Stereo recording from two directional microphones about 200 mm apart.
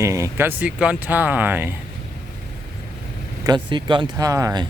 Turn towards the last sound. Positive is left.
turn(degrees=-20)  # may be behind; listen again after turning